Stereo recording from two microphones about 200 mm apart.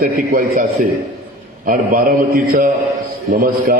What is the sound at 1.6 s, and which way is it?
A man's voice, 45° right (ahead or behind).